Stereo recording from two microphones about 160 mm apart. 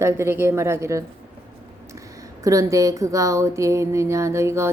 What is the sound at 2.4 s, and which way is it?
A woman's voice, 20° right (ahead or behind).